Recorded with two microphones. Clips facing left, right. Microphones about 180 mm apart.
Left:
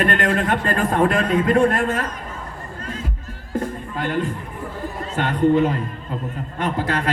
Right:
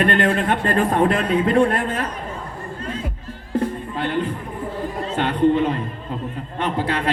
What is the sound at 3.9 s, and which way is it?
A man's voice, 45° left (ahead or behind).